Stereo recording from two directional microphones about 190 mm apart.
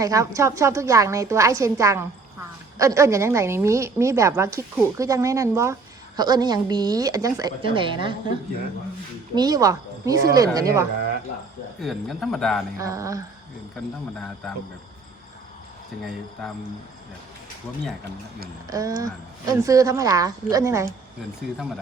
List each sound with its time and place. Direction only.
0.0 s a woman's voice: 15° right (ahead or behind)
9.3 s a woman's voice: 20° right (ahead or behind)
11.8 s speech: centre (ahead or behind)
12.8 s a woman's voice: 15° right (ahead or behind)
18.7 s a woman's voice: 20° right (ahead or behind)
21.4 s speech: centre (ahead or behind)